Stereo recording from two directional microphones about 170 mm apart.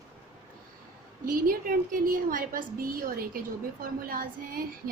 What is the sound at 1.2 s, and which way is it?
A woman's voice, 55° right (ahead or behind).